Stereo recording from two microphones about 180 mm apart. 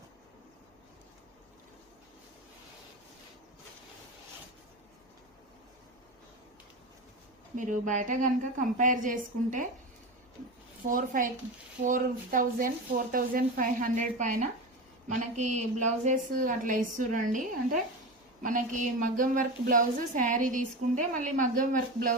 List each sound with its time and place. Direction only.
7.5 s a woman's voice: 45° right (ahead or behind)
10.8 s a woman's voice: 50° right (ahead or behind)